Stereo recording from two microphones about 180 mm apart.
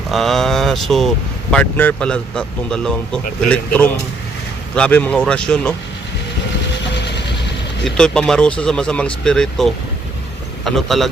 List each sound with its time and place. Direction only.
0.1 s speech: centre (ahead or behind)
6.9 s vehicle: 70° left (ahead or behind)
7.9 s speech: 5° left (ahead or behind)